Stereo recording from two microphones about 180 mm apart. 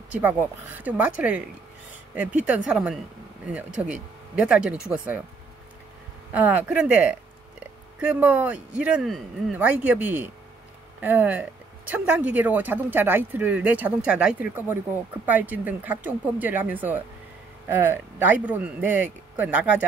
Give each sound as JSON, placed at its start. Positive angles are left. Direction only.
{"t": 0.1, "sound": "speech", "side_deg": -10}
{"t": 2.1, "sound": "speech", "side_deg": -10}
{"t": 6.3, "sound": "speech", "side_deg": -10}